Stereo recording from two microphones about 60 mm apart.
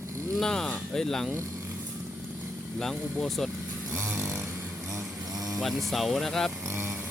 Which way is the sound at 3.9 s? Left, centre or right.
Right.